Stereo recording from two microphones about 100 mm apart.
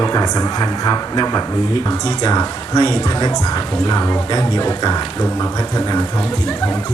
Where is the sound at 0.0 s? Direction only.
40° left (ahead or behind).